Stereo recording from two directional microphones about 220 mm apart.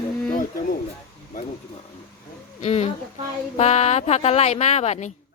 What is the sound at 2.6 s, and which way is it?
A woman's voice, 30° left (ahead or behind).